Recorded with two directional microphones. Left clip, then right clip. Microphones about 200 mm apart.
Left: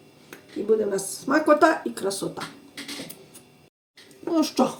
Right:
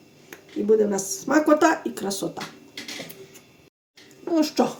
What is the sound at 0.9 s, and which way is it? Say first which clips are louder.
Speech: right 2 dB; 40° right (ahead or behind).